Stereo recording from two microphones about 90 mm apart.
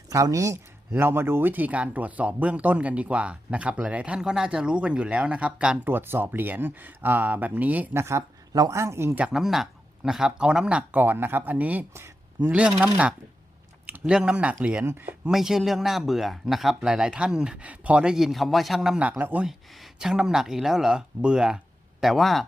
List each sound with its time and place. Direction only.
0.1 s speech: 35° right (ahead or behind); by 5.9 s 10° right (ahead or behind)
5.9 s speech: 25° right (ahead or behind)
8.0 s speech: 35° right (ahead or behind)
9.3 s speech: centre (ahead or behind)
13.8 s a sound: 20° right (ahead or behind)
14.1 s speech: 10° right (ahead or behind)
15.3 s speech: 5° right (ahead or behind)
19.2 s speech: 15° right (ahead or behind)
19.5 s speech: centre (ahead or behind)